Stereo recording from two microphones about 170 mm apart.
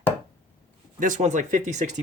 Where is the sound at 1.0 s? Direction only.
45° right (ahead or behind).